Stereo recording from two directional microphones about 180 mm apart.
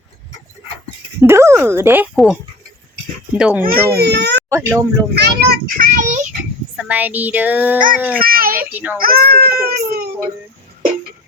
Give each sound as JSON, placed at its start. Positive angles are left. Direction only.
{"t": 1.2, "sound": "speech", "side_deg": -15}
{"t": 2.1, "sound": "a child's voice", "side_deg": 0}
{"t": 3.9, "sound": "a child's voice", "side_deg": -65}
{"t": 4.4, "sound": "speech", "side_deg": -15}
{"t": 5.1, "sound": "a child's voice", "side_deg": -60}
{"t": 6.7, "sound": "speech", "side_deg": -10}
{"t": 8.2, "sound": "a sound", "side_deg": -55}
{"t": 8.7, "sound": "speech", "side_deg": -5}
{"t": 9.0, "sound": "speech", "side_deg": -55}